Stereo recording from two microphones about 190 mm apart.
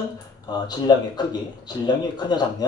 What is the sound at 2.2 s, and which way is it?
Speech, 20° left (ahead or behind).